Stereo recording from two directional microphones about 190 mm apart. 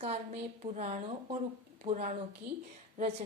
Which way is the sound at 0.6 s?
35° right (ahead or behind).